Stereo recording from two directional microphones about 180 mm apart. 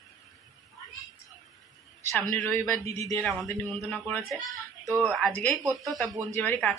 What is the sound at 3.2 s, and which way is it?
Speech, centre (ahead or behind).